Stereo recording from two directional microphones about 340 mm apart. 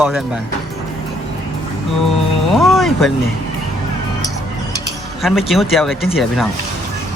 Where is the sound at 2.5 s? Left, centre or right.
Centre.